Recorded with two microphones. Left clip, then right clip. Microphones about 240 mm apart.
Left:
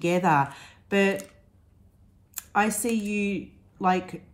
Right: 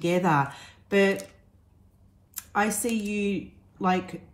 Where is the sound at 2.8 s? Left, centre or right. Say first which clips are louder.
Left 1 dB; left.